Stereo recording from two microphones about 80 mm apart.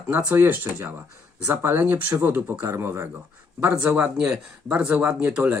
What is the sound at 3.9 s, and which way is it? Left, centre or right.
Speech, centre.